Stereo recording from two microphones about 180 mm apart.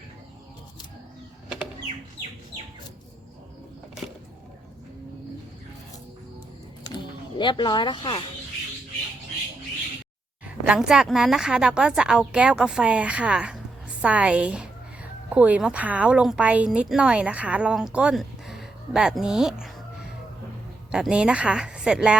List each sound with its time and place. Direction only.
6.9 s speech: 25° left (ahead or behind)
10.4 s a woman's voice: 5° right (ahead or behind)
20.9 s speech: 5° right (ahead or behind)